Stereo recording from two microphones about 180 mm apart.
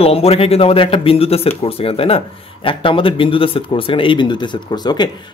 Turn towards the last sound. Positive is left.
turn(degrees=25)  # may be behind; listen again after turning